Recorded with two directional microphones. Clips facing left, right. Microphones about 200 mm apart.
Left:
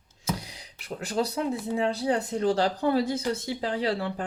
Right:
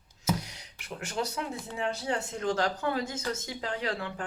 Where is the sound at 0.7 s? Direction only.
35° left (ahead or behind).